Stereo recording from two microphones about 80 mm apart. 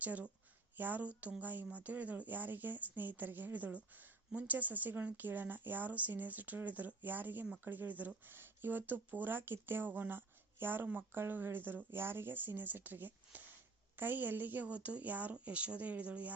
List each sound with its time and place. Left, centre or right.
0.0 s a woman's voice: centre